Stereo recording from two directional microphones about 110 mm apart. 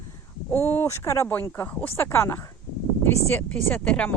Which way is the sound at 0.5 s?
20° left (ahead or behind).